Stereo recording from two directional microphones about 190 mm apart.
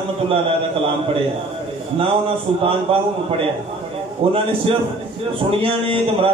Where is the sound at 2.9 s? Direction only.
30° right (ahead or behind).